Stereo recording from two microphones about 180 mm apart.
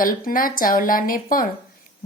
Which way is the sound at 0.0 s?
50° left (ahead or behind).